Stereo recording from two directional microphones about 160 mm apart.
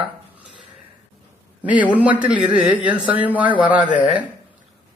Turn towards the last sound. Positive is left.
turn(degrees=-10)  # may be behind; listen again after turning